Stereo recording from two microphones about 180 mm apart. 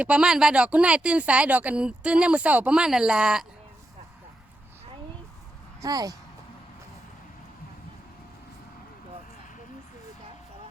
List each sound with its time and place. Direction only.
0.0 s speech: 5° right (ahead or behind)
5.8 s speech: 20° right (ahead or behind)